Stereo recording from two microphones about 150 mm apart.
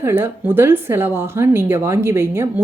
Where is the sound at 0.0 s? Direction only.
15° right (ahead or behind).